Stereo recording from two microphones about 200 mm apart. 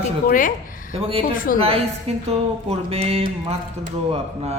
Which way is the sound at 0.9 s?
30° right (ahead or behind).